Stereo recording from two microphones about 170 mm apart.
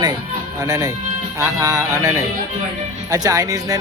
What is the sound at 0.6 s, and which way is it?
Speech, 20° right (ahead or behind).